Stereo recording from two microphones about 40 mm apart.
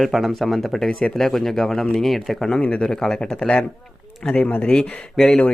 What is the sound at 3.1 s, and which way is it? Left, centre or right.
Speech, left.